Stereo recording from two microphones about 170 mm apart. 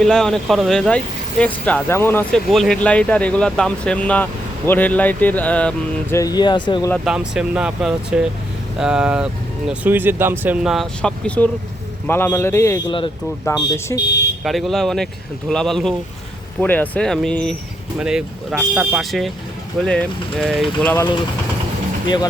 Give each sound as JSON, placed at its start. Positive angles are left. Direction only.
{"t": 0.0, "sound": "speech", "side_deg": 0}
{"t": 2.5, "sound": "speech", "side_deg": 0}
{"t": 7.0, "sound": "speech", "side_deg": -5}
{"t": 14.4, "sound": "speech", "side_deg": 0}
{"t": 22.0, "sound": "speech", "side_deg": 25}